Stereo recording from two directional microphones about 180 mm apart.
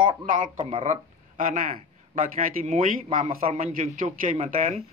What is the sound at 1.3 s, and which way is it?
Speech, 50° right (ahead or behind).